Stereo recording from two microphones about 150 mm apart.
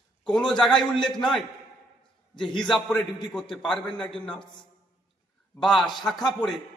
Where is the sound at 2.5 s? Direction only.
5° left (ahead or behind).